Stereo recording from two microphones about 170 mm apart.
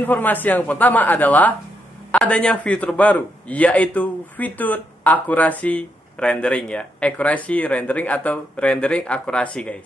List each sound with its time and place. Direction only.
0.0 s a man's voice: 10° left (ahead or behind)